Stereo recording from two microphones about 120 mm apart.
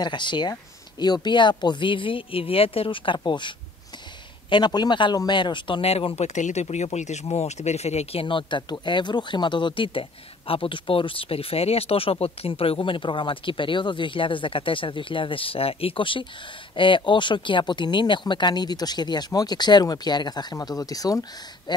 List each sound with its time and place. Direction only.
0.0 s a man's voice: 40° left (ahead or behind)